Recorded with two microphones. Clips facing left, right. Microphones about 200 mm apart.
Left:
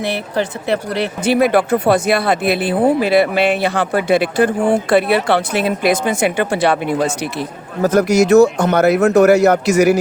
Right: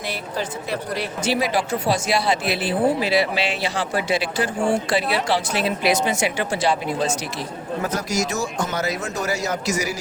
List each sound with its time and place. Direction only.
0.0 s speech: 65° left (ahead or behind)